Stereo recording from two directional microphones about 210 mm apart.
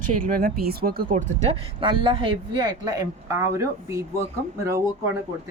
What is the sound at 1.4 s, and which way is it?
A woman's voice, 25° right (ahead or behind).